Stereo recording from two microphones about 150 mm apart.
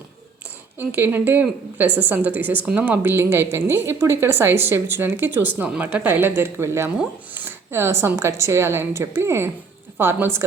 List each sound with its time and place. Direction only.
0.8 s a woman's voice: 15° right (ahead or behind)